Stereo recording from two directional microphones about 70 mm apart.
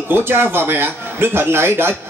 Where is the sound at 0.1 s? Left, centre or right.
Right.